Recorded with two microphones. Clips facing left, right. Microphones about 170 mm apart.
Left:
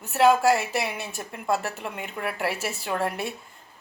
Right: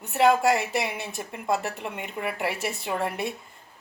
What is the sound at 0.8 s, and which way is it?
A woman's voice, 20° right (ahead or behind).